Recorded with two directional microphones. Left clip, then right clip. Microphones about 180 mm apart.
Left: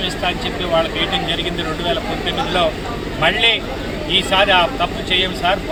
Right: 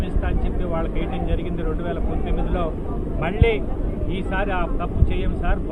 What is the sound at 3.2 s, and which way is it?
Speech, 15° left (ahead or behind).